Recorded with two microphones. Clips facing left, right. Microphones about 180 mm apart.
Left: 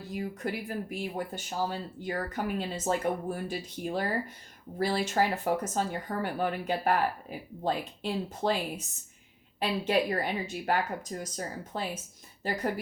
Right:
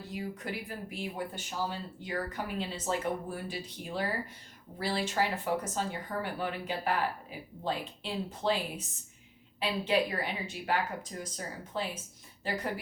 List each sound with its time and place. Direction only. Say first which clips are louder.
0.1 s a woman's voice: left 4 dB; 45° left (ahead or behind)